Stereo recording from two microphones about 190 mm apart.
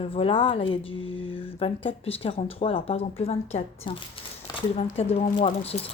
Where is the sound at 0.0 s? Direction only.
30° left (ahead or behind).